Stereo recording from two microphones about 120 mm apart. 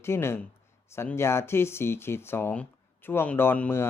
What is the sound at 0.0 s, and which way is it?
Speech, 20° left (ahead or behind).